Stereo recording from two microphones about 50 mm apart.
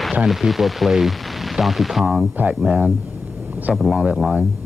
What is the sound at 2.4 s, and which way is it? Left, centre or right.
Speech, right.